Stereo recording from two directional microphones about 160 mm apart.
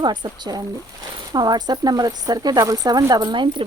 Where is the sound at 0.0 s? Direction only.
30° right (ahead or behind).